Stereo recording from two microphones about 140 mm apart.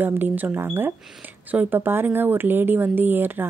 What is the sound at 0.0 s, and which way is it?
A woman's voice, 15° right (ahead or behind).